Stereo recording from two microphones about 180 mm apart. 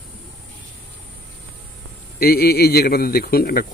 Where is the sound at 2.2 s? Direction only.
60° left (ahead or behind).